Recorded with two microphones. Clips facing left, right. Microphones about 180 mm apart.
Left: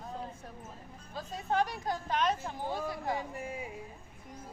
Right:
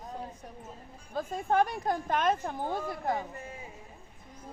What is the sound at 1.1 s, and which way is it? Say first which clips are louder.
Speech: right 5 dB; 50° right (ahead or behind).